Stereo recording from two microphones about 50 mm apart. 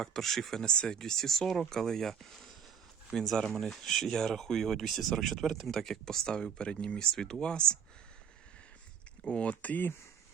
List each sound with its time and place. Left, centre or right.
0.0 s speech: centre
9.2 s speech: left